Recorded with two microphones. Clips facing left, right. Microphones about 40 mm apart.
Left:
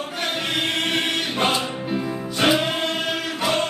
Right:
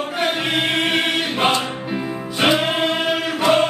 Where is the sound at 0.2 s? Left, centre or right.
Centre.